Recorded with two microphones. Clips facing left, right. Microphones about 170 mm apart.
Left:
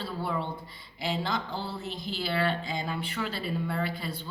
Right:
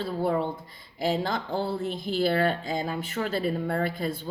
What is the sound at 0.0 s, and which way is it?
Speech, 50° right (ahead or behind).